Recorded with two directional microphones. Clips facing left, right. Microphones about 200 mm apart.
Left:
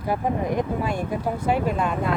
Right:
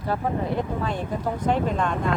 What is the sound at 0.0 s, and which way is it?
Speech, 15° left (ahead or behind).